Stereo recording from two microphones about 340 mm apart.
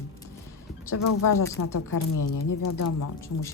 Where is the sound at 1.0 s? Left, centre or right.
Left.